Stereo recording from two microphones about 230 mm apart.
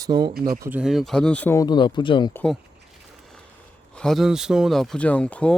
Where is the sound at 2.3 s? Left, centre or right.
Centre.